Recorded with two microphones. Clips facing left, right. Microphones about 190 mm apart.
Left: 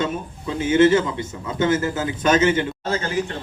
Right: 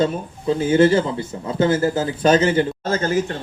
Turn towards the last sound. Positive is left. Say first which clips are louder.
# right 4 dB
turn(degrees=-40)  # may be behind; listen again after turning